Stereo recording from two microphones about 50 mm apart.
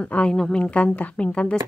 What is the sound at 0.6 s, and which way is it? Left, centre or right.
Speech, left.